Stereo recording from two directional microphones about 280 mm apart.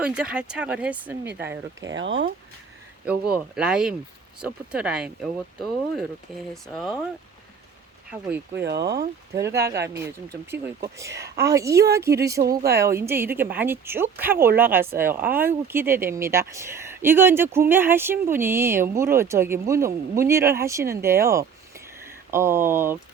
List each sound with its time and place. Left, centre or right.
0.0 s speech: centre
1.9 s speech: right
3.3 s speech: centre
8.6 s speech: right
9.3 s speech: centre
12.4 s speech: right
13.0 s speech: centre